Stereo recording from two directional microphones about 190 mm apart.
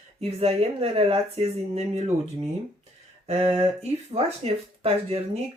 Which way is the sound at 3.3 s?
30° right (ahead or behind).